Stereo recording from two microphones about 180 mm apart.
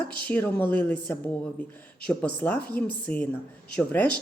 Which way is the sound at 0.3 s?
10° left (ahead or behind).